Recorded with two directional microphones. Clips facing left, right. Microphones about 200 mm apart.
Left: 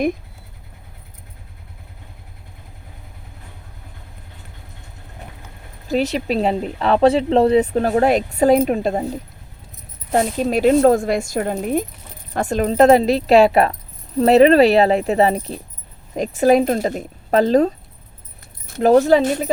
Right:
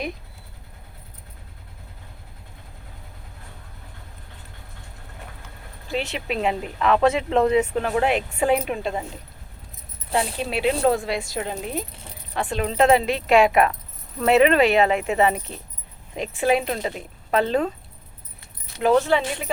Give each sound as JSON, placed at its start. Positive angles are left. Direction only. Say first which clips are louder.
{"t": 5.9, "sound": "speech", "louder": "left 8 dB", "side_deg": 40}